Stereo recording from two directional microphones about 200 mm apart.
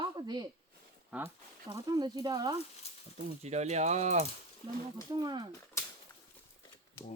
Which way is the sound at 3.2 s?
35° right (ahead or behind).